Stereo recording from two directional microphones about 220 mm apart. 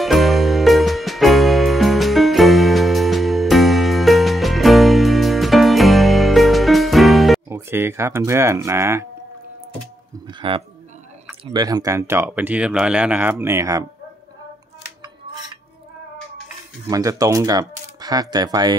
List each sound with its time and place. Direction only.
0.0 s music: centre (ahead or behind)
7.4 s speech: 10° right (ahead or behind)
10.2 s speech: 25° right (ahead or behind)
16.8 s speech: 15° right (ahead or behind)